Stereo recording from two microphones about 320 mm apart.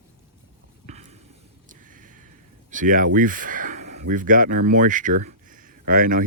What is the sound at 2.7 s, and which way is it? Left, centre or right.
Speech, right.